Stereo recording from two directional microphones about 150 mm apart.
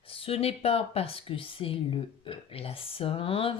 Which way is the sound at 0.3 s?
40° left (ahead or behind).